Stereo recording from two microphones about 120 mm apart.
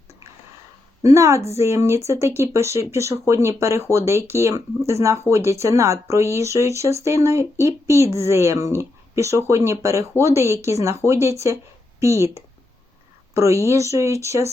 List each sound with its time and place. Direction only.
1.0 s a woman's voice: 25° right (ahead or behind)